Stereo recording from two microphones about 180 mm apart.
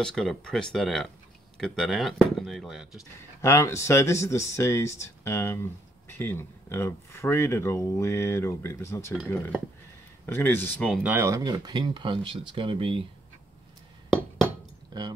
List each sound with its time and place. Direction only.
0.0 s speech: centre (ahead or behind)
3.4 s speech: 15° left (ahead or behind)
10.2 s speech: 10° left (ahead or behind)
11.0 s speech: 10° right (ahead or behind); by 13.0 s 30° right (ahead or behind)
14.9 s speech: 25° right (ahead or behind)